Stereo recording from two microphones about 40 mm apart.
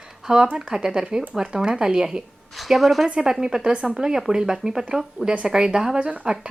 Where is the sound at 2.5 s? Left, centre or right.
Centre.